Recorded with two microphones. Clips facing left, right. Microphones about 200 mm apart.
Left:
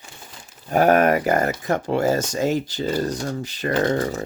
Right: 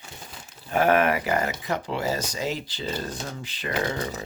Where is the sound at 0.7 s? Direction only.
45° left (ahead or behind).